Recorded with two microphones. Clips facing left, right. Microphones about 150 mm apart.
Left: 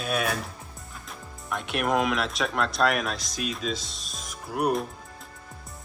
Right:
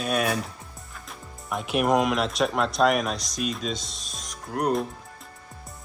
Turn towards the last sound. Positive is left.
turn(degrees=5)  # may be behind; listen again after turning